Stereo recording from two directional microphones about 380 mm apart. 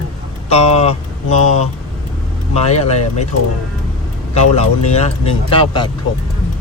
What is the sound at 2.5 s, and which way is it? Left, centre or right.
Speech, centre.